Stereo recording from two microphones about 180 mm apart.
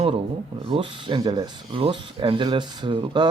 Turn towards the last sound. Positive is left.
turn(degrees=-25)  # may be behind; listen again after turning